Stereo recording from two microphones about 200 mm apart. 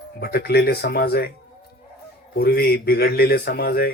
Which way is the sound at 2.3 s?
50° left (ahead or behind).